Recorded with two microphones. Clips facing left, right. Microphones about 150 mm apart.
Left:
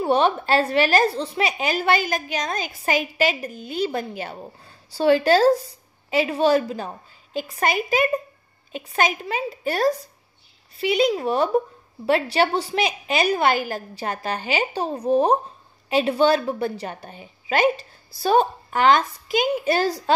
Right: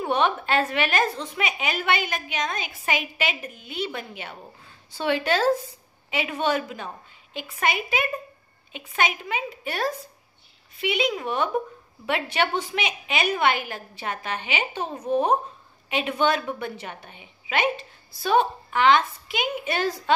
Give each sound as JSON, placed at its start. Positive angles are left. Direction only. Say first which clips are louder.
{"t": 0.0, "sound": "a woman's voice", "louder": "left 4 dB", "side_deg": 35}